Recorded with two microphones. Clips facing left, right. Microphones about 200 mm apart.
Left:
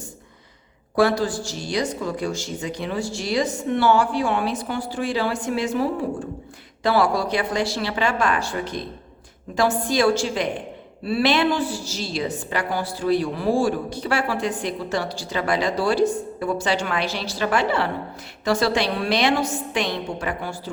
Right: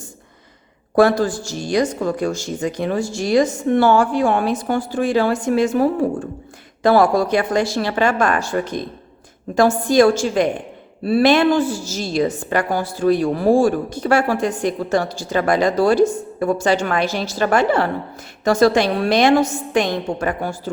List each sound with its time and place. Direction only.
0.9 s a woman's voice: 50° right (ahead or behind)